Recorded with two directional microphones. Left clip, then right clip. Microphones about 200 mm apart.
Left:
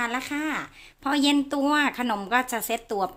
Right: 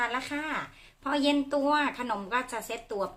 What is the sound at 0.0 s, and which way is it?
A woman's voice, 30° left (ahead or behind).